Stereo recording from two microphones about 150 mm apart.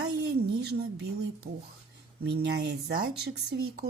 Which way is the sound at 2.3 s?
90° right.